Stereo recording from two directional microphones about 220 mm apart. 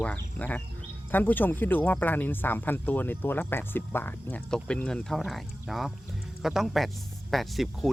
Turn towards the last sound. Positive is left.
turn(degrees=0)  # may be behind; listen again after turning